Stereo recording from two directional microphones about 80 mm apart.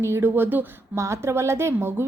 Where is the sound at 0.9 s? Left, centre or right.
Right.